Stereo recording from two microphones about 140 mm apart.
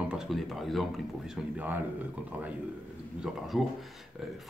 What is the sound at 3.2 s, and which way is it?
Speech, centre (ahead or behind).